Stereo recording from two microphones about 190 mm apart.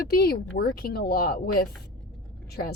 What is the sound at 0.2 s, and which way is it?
A woman's voice, 55° left (ahead or behind).